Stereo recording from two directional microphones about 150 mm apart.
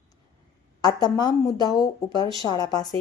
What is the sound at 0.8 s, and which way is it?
Speech, 25° left (ahead or behind).